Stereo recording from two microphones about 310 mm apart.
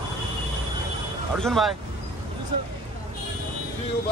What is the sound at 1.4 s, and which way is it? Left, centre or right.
Speech, centre.